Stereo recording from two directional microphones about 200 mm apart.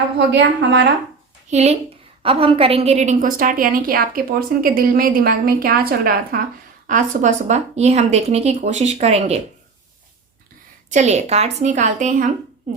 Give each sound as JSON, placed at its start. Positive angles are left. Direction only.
{"t": 0.3, "sound": "speech", "side_deg": -60}
{"t": 1.5, "sound": "a woman's voice", "side_deg": -35}
{"t": 10.9, "sound": "speech", "side_deg": -35}